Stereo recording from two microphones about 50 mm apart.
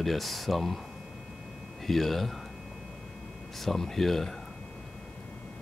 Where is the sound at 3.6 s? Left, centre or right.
Centre.